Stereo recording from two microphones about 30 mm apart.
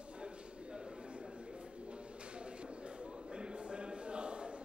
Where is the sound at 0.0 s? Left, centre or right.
Right.